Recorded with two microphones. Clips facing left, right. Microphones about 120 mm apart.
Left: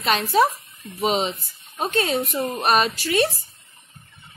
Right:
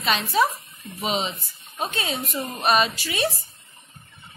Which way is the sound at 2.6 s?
45° left (ahead or behind).